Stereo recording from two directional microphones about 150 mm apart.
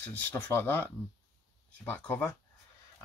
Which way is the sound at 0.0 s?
10° left (ahead or behind).